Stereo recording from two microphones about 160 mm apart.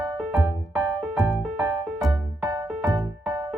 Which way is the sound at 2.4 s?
20° right (ahead or behind).